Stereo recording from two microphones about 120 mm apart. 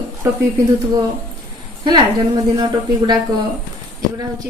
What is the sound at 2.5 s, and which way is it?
Speech, 35° right (ahead or behind).